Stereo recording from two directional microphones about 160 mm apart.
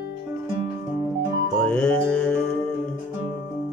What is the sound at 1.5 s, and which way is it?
Music, 10° left (ahead or behind).